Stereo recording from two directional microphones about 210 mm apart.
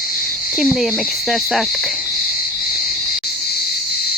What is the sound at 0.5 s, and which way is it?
Speech, 5° right (ahead or behind).